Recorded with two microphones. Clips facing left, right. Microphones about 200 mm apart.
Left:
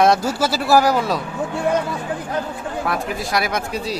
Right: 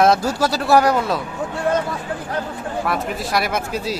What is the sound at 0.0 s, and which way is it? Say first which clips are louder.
Speech: even; centre (ahead or behind).